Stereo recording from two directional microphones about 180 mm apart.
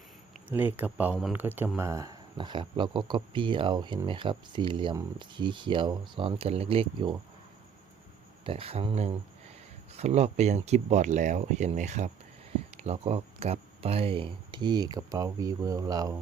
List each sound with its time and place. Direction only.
0.4 s speech: 10° right (ahead or behind); by 7.2 s 30° right (ahead or behind)
8.4 s speech: 30° right (ahead or behind)